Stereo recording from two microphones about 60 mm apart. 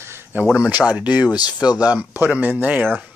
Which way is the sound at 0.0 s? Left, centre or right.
Right.